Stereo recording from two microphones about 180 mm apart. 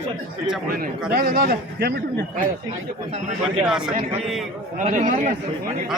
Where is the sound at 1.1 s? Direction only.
50° right (ahead or behind).